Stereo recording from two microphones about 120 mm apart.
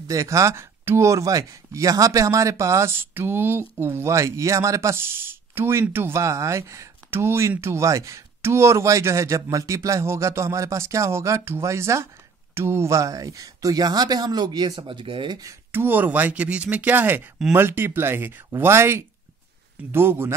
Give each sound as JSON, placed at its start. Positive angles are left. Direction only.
{"t": 0.1, "sound": "speech", "side_deg": -25}
{"t": 15.7, "sound": "speech", "side_deg": -15}